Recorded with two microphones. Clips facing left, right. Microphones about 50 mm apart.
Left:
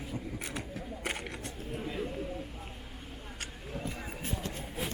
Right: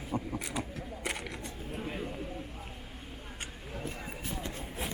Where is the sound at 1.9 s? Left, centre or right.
Centre.